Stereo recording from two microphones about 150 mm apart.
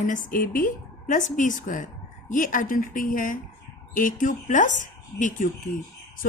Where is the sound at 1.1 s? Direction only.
55° left (ahead or behind).